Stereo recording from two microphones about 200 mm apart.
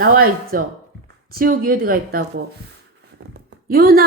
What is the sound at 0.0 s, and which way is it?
A woman's voice, 45° right (ahead or behind).